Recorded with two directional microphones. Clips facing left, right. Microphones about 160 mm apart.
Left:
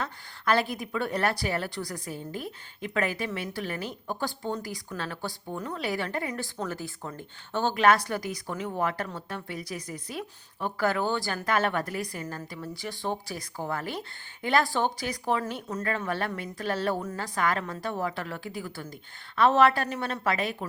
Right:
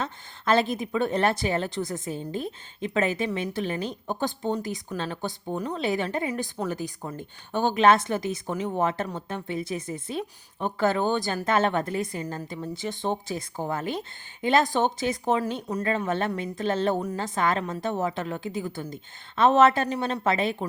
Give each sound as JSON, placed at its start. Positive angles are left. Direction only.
{"t": 0.0, "sound": "speech", "side_deg": -20}